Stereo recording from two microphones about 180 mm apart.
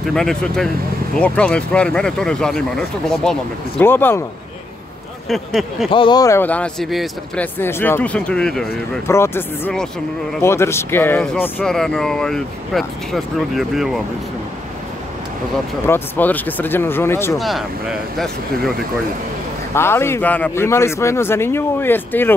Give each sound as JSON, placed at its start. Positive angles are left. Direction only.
{"t": 0.1, "sound": "a man's voice", "side_deg": 5}
{"t": 5.3, "sound": "speech", "side_deg": 0}
{"t": 5.9, "sound": "a man's voice", "side_deg": 25}
{"t": 7.5, "sound": "a man's voice", "side_deg": 10}
{"t": 9.0, "sound": "a man's voice", "side_deg": 15}
{"t": 15.9, "sound": "a man's voice", "side_deg": 10}
{"t": 17.4, "sound": "speech", "side_deg": 0}
{"t": 19.7, "sound": "a man's voice", "side_deg": 15}